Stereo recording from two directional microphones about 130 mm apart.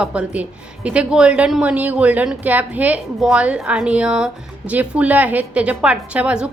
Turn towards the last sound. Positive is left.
turn(degrees=-10)  # may be behind; listen again after turning